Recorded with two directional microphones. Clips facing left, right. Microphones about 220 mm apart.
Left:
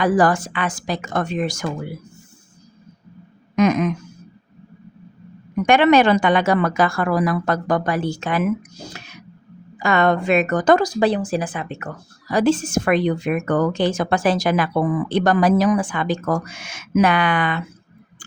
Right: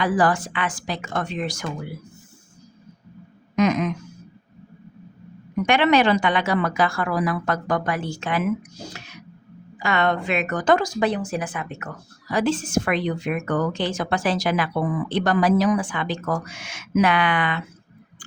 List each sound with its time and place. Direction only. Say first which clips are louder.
0.0 s speech: left 4 dB; 45° left (ahead or behind)
3.5 s a sound: left 3 dB; 50° left (ahead or behind)
5.6 s speech: left 4 dB; 45° left (ahead or behind)
9.7 s a woman's voice: left 4 dB; 45° left (ahead or behind)